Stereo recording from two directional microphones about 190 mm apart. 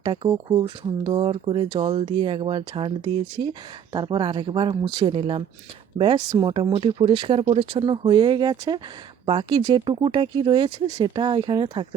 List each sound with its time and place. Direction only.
0.0 s speech: 25° right (ahead or behind)